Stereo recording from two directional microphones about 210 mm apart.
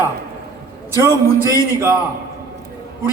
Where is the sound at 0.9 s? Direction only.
15° right (ahead or behind).